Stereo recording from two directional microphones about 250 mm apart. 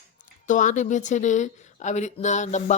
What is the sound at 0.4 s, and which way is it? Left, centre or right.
Speech, left.